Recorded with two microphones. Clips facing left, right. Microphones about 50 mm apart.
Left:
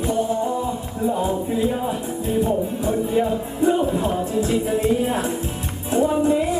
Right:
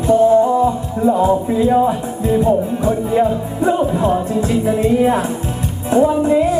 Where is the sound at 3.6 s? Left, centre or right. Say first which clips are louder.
Right 4 dB; right.